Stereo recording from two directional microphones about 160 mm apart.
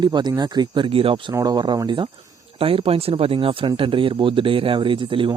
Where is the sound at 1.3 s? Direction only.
25° right (ahead or behind).